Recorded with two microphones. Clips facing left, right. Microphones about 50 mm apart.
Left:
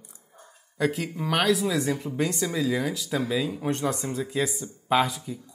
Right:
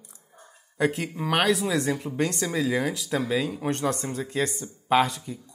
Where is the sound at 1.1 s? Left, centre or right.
Right.